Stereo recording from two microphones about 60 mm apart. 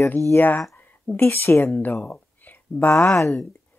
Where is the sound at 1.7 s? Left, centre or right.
Left.